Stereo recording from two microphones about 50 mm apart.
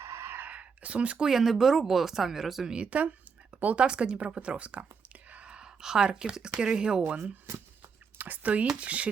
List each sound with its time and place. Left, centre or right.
0.0 s whispering: right
0.4 s a sound: right
1.3 s speech: centre
2.7 s speech: right
8.2 s speech: right